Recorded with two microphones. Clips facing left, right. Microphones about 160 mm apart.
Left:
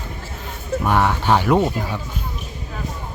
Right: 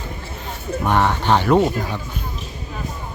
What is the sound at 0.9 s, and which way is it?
Speech, 10° left (ahead or behind).